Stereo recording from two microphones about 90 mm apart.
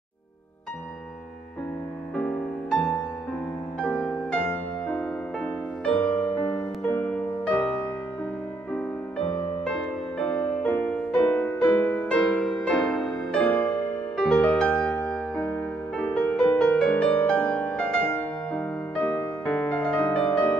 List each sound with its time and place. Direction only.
2.1 s music: 10° left (ahead or behind)
9.7 s music: 10° left (ahead or behind)
12.1 s music: 10° left (ahead or behind)
16.9 s music: 20° left (ahead or behind)